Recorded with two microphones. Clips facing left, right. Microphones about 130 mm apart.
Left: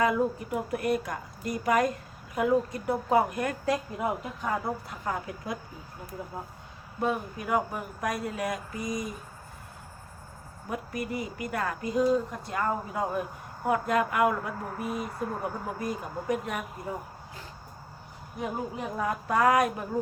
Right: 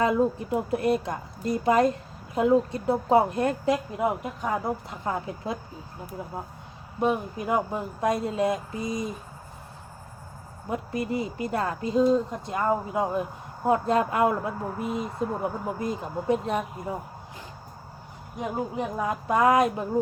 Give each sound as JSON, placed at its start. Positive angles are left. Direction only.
{"t": 0.0, "sound": "a woman's voice", "side_deg": -25}
{"t": 7.0, "sound": "a woman's voice", "side_deg": -20}
{"t": 10.7, "sound": "a woman's voice", "side_deg": -25}
{"t": 18.9, "sound": "a woman's voice", "side_deg": -20}